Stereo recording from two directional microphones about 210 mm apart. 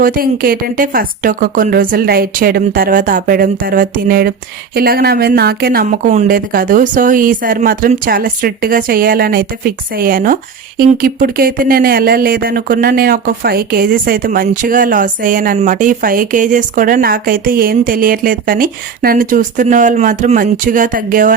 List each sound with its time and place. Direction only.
0.0 s speech: 45° right (ahead or behind)